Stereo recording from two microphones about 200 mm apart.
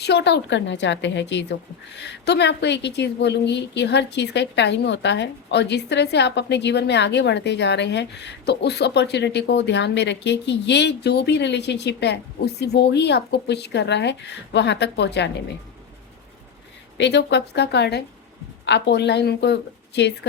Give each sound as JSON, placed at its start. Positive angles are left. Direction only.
{"t": 0.0, "sound": "a woman's voice", "side_deg": 55}
{"t": 17.0, "sound": "a woman's voice", "side_deg": 60}